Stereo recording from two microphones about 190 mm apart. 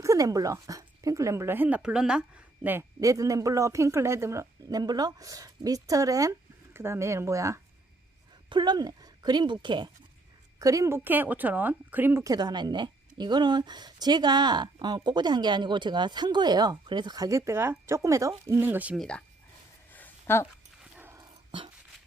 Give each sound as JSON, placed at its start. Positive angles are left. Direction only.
{"t": 0.0, "sound": "speech", "side_deg": -15}
{"t": 19.9, "sound": "a sound", "side_deg": 10}
{"t": 21.0, "sound": "dog", "side_deg": -15}